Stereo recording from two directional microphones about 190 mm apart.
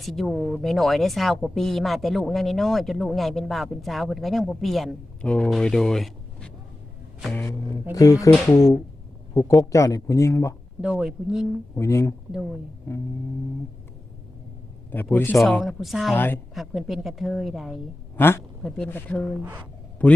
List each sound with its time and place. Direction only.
0.0 s speech: centre (ahead or behind)
10.8 s speech: 5° right (ahead or behind)
11.7 s speech: 15° left (ahead or behind)
15.1 s speech: 10° left (ahead or behind)
15.4 s speech: centre (ahead or behind)
16.1 s speech: 10° left (ahead or behind)
16.6 s speech: centre (ahead or behind)
18.2 s speech: 10° left (ahead or behind)
19.4 s speech: 10° right (ahead or behind)
20.0 s a man's voice: 5° left (ahead or behind)